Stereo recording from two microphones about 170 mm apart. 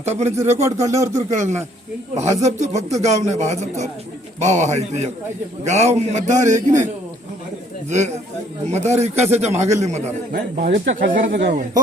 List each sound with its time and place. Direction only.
0.0 s a man's voice: 40° right (ahead or behind)
0.3 s speech: 15° right (ahead or behind)
1.3 s a man's voice: 45° right (ahead or behind)
10.3 s a man's voice: 55° right (ahead or behind)
11.3 s speech: 90° right